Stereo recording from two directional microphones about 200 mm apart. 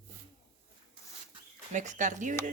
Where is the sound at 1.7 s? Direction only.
35° right (ahead or behind).